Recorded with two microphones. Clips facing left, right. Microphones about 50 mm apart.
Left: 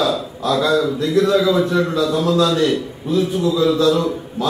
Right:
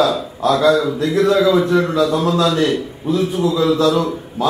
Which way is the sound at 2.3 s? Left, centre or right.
Right.